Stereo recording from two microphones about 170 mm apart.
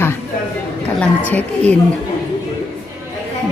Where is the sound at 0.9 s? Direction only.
10° left (ahead or behind).